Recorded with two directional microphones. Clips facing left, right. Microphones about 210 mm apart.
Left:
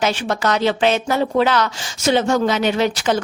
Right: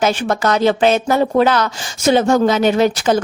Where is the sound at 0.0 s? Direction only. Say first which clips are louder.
Right 3 dB; 50° right (ahead or behind).